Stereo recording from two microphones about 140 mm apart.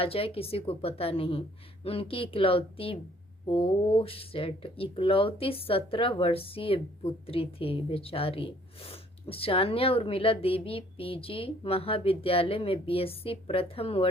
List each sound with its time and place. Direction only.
0.0 s a woman's voice: 45° left (ahead or behind)